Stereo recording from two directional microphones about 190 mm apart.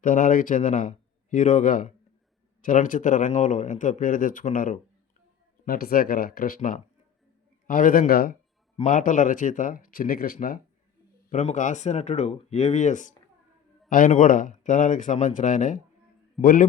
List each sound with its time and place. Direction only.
0.0 s speech: 45° left (ahead or behind)